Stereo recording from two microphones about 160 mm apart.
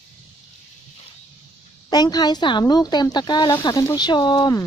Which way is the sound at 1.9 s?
25° left (ahead or behind).